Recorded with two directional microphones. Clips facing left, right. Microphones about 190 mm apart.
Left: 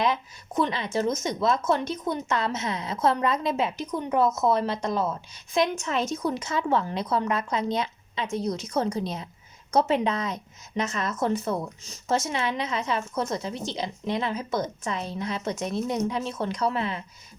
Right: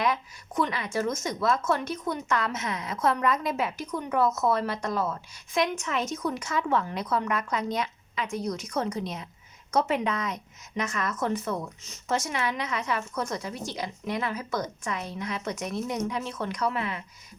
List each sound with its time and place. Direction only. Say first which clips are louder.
0.0 s speech: left 2 dB; 25° left (ahead or behind)